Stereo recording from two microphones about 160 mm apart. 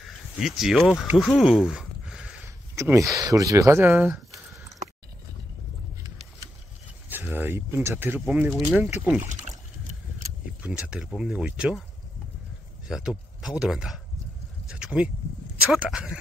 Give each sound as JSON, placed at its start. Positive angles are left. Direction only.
{"t": 0.4, "sound": "speech", "side_deg": 0}
{"t": 2.4, "sound": "speech", "side_deg": -15}
{"t": 7.1, "sound": "speech", "side_deg": -10}
{"t": 9.2, "sound": "boat", "side_deg": -50}
{"t": 10.6, "sound": "speech", "side_deg": -5}
{"t": 12.8, "sound": "speech", "side_deg": -5}
{"t": 14.7, "sound": "a sound", "side_deg": -5}
{"t": 15.7, "sound": "speech", "side_deg": -5}